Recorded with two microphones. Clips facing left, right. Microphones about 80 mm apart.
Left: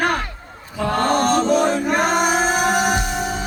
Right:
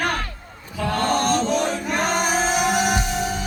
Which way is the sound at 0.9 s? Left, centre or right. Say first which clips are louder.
Left 3 dB; left.